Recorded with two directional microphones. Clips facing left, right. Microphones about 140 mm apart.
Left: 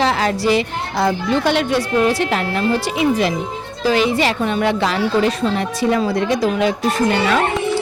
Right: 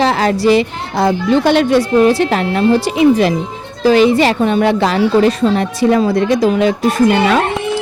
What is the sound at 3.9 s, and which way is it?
A woman's voice, 40° right (ahead or behind).